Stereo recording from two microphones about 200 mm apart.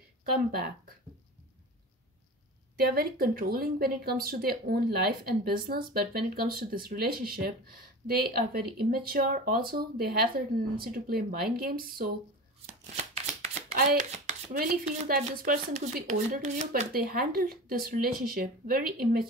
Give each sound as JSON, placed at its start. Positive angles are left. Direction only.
{"t": 2.8, "sound": "speech", "side_deg": -50}
{"t": 12.9, "sound": "speech", "side_deg": -35}